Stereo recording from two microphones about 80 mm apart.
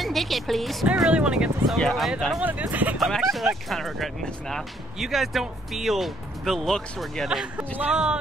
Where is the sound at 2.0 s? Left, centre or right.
Centre.